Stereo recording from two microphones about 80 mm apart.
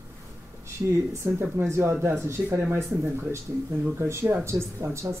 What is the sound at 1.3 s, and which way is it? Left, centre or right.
A man's voice, right.